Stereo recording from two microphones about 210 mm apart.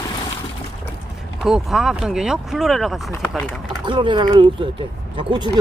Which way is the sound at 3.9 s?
20° right (ahead or behind).